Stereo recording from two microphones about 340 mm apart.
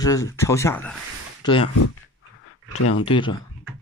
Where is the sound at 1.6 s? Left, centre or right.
Left.